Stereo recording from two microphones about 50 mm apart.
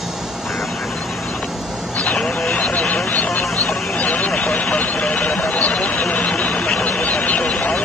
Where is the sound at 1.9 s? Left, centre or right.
Left.